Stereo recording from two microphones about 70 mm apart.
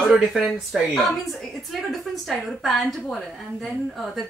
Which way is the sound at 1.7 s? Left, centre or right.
Centre.